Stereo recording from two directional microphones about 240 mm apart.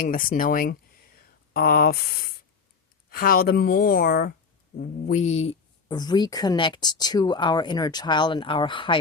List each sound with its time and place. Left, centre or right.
0.0 s a woman's voice: left